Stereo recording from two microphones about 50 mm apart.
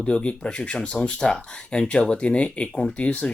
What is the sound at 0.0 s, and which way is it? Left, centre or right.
Speech, left.